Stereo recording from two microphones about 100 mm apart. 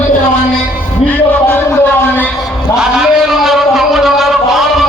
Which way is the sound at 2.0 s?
20° left (ahead or behind).